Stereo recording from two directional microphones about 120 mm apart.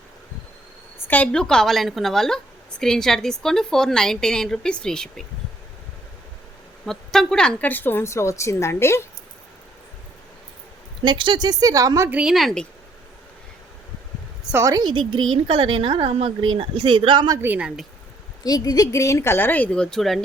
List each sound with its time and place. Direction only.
0.9 s a woman's voice: 15° left (ahead or behind)
6.8 s a woman's voice: 5° left (ahead or behind); by 9.0 s 20° left (ahead or behind)
11.0 s speech: 40° right (ahead or behind)
12.0 s a woman's voice: 10° right (ahead or behind)
14.5 s a woman's voice: 30° right (ahead or behind)
14.8 s speech: 45° right (ahead or behind)
17.4 s a woman's voice: 10° right (ahead or behind)
18.4 s speech: 35° left (ahead or behind); by 20.1 s 5° left (ahead or behind)